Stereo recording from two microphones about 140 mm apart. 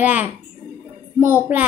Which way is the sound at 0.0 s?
10° right (ahead or behind).